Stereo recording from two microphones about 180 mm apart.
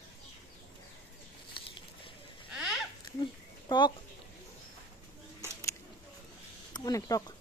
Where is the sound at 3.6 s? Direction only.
25° left (ahead or behind).